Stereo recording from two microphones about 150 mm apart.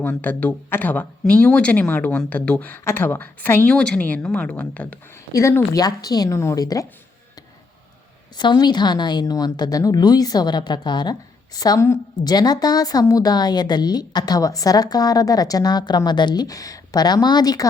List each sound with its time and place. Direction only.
0.0 s a woman's voice: 10° left (ahead or behind)
8.4 s a woman's voice: 30° left (ahead or behind)